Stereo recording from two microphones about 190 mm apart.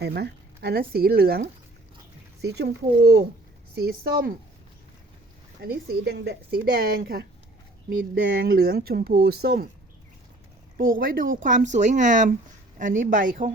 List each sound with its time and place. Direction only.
0.0 s speech: 60° right (ahead or behind)
5.6 s speech: 55° right (ahead or behind)
10.8 s speech: 50° right (ahead or behind)